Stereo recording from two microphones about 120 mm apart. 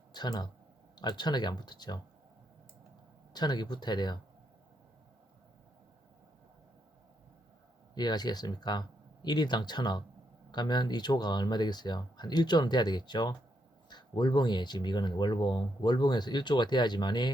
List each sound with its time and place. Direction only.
0.1 s a sound: 35° left (ahead or behind)
0.9 s speech: 35° left (ahead or behind)
3.3 s speech: 35° left (ahead or behind)
7.9 s speech: 35° left (ahead or behind)